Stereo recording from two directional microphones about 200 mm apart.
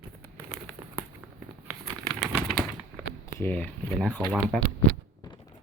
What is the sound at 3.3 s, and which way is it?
Speech, 10° left (ahead or behind).